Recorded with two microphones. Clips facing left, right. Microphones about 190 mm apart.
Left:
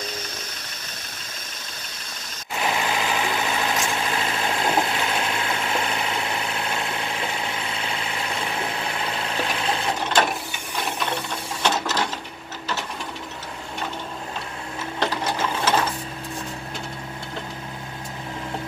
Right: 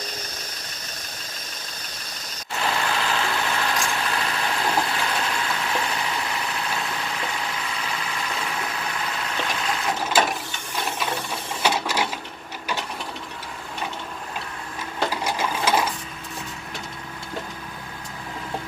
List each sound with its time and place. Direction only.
2.6 s vehicle: 15° left (ahead or behind)
7.4 s vehicle: 25° left (ahead or behind)
8.5 s engine: 30° left (ahead or behind)
10.0 s ratchet: 5° right (ahead or behind)
11.6 s ratchet: 10° right (ahead or behind)
15.0 s sewing machine: 10° right (ahead or behind)